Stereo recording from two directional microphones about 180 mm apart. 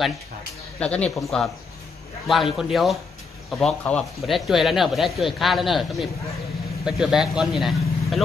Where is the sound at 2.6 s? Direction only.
Centre (ahead or behind).